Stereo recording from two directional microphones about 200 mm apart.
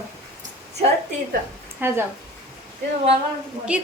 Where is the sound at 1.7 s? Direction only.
10° right (ahead or behind).